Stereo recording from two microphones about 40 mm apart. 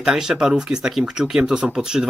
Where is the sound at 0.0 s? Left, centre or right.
Centre.